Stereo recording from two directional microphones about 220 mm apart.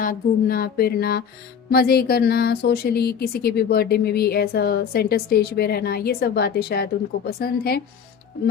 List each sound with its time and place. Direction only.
0.0 s speech: 40° left (ahead or behind)